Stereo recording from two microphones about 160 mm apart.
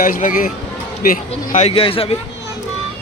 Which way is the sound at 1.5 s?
40° left (ahead or behind).